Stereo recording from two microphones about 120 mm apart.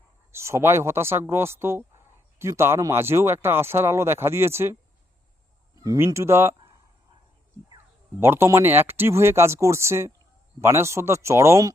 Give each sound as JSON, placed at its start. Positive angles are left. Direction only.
{"t": 0.3, "sound": "speech", "side_deg": -20}
{"t": 8.2, "sound": "speech", "side_deg": -20}